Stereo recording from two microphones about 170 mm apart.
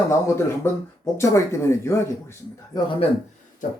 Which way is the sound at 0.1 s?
15° left (ahead or behind).